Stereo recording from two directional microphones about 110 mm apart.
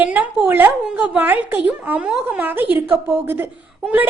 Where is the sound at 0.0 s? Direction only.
15° right (ahead or behind).